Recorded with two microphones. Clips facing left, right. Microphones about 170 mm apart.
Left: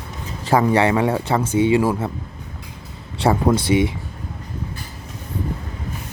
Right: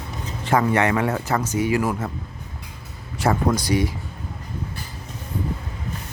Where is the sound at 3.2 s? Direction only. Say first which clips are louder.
Left 3 dB; 25° left (ahead or behind).